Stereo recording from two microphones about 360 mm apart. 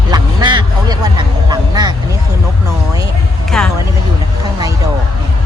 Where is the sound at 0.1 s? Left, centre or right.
Centre.